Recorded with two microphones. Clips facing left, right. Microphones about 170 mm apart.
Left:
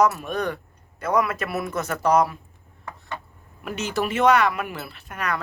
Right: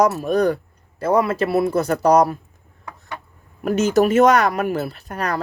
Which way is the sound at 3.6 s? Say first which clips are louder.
Right 10 dB; 45° right (ahead or behind).